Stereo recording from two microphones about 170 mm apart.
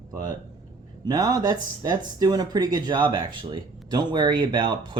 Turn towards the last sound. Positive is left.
turn(degrees=-30)  # may be behind; listen again after turning